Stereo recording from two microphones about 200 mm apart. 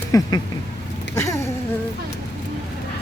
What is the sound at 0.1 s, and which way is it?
Speech, 20° left (ahead or behind).